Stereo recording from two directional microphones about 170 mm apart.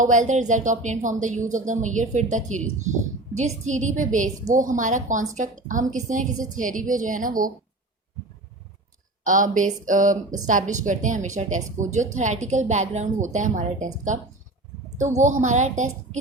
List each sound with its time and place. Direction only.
0.0 s a woman's voice: 45° right (ahead or behind)
9.2 s a woman's voice: 50° right (ahead or behind)